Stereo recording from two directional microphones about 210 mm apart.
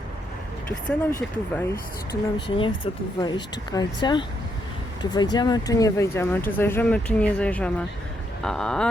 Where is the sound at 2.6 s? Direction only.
25° left (ahead or behind).